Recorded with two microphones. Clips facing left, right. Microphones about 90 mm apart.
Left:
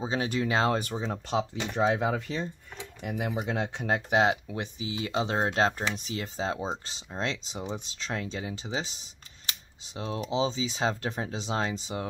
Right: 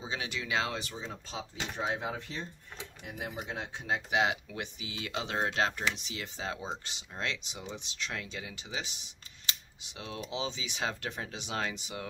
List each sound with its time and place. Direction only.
0.0 s speech: 40° left (ahead or behind)
1.0 s speech: 70° left (ahead or behind); by 3.9 s 90° left
4.1 s speech: 35° left (ahead or behind)